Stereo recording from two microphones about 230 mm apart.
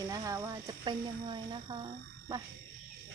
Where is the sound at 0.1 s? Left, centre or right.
Centre.